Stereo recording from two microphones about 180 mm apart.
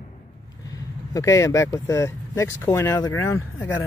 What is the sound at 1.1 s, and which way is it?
Speech, 15° left (ahead or behind).